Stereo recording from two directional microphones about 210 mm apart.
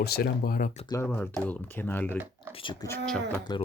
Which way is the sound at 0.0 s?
50° left (ahead or behind).